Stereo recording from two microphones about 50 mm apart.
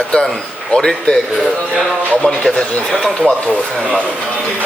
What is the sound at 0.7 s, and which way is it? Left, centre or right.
Speech, centre.